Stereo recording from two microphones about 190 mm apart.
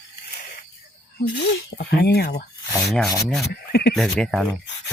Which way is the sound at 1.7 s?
55° left (ahead or behind).